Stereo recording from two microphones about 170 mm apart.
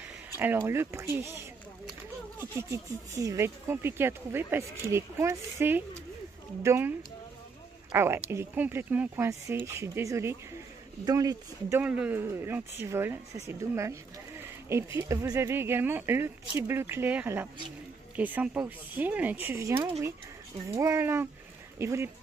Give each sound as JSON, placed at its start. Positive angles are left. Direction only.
{"t": 0.4, "sound": "speech", "side_deg": -15}
{"t": 3.2, "sound": "speech", "side_deg": -15}
{"t": 11.8, "sound": "speech", "side_deg": -10}